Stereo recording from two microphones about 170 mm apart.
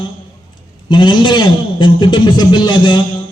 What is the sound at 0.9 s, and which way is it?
A man's voice, 30° left (ahead or behind).